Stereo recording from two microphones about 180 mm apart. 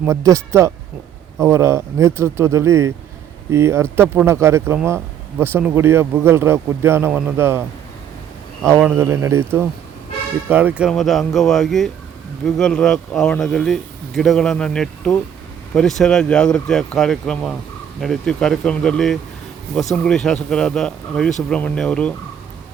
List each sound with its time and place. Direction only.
0.0 s speech: 15° right (ahead or behind)
8.6 s speech: 10° right (ahead or behind); by 22.1 s 5° left (ahead or behind)